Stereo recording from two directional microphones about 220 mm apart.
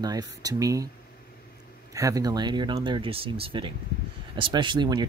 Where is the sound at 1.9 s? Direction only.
15° right (ahead or behind).